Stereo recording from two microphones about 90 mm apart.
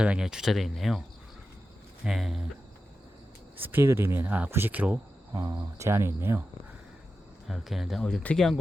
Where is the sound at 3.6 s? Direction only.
25° right (ahead or behind).